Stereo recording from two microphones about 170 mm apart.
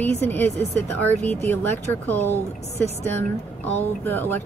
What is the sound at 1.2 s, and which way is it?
Speech, 40° right (ahead or behind).